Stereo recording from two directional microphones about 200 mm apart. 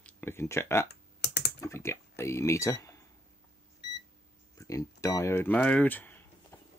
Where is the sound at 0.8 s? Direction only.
55° left (ahead or behind).